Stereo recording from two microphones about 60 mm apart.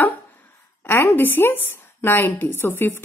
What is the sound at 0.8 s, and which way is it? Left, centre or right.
A woman's voice, left.